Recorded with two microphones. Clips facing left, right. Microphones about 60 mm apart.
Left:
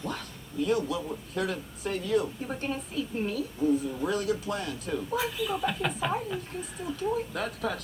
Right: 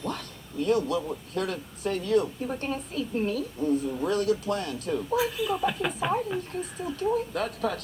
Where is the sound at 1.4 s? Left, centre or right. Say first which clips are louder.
Right 1 dB; right.